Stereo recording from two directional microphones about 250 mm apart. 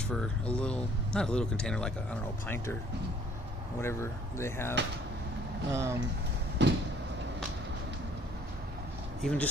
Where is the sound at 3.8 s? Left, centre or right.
Centre.